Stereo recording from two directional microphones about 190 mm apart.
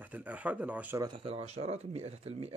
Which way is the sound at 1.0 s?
25° right (ahead or behind).